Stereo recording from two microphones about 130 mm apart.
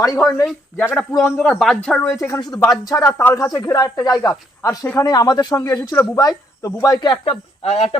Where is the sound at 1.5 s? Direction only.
5° left (ahead or behind).